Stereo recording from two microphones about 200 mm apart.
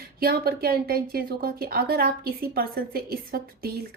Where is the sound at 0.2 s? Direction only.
50° right (ahead or behind).